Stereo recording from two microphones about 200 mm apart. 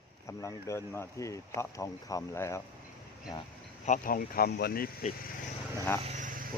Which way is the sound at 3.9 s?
45° left (ahead or behind).